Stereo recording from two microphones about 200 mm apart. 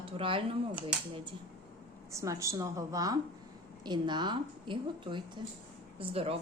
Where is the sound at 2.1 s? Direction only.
15° right (ahead or behind).